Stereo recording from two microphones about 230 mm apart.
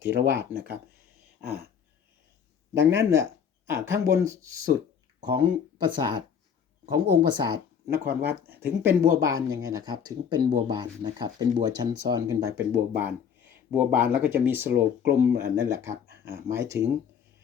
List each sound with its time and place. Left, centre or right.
0.0 s speech: right
0.3 s speech: centre
2.7 s speech: centre